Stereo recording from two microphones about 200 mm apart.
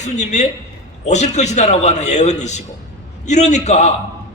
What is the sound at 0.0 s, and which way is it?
A man's voice, 35° left (ahead or behind).